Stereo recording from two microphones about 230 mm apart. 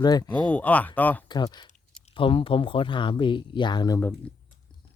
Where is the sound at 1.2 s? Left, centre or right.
Centre.